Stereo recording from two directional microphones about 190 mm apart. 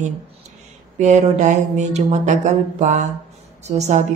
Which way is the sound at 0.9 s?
40° right (ahead or behind).